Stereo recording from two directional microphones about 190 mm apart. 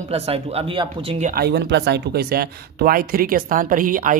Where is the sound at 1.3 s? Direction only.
60° right (ahead or behind).